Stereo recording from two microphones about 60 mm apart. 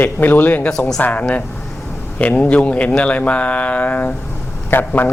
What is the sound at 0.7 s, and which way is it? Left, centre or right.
Speech, centre.